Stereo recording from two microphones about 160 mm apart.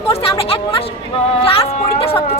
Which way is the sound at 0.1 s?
35° left (ahead or behind).